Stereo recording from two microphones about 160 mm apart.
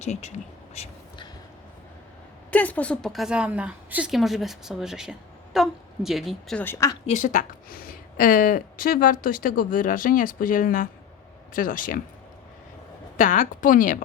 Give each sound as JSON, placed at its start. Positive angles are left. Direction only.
{"t": 0.0, "sound": "speech", "side_deg": 45}
{"t": 2.5, "sound": "a woman's voice", "side_deg": 10}
{"t": 6.6, "sound": "a woman's voice", "side_deg": 15}
{"t": 7.1, "sound": "a woman's voice", "side_deg": 50}
{"t": 13.1, "sound": "a woman's voice", "side_deg": 55}